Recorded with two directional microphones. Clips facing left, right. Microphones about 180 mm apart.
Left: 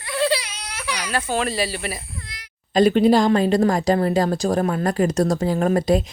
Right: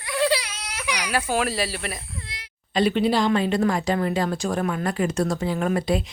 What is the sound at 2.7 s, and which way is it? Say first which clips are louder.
Speech: left 6 dB; 45° left (ahead or behind).